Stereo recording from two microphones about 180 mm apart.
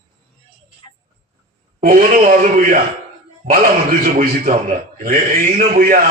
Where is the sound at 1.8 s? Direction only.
50° right (ahead or behind).